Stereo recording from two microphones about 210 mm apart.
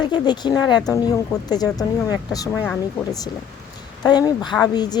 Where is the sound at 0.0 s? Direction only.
20° left (ahead or behind).